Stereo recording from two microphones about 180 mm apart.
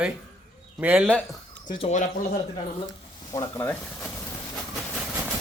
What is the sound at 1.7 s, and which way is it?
Speech, 35° left (ahead or behind).